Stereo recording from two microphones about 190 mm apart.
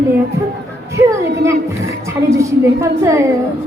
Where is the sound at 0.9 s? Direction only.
15° right (ahead or behind).